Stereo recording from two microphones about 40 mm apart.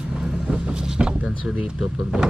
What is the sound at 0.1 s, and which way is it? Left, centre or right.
Vehicle, centre.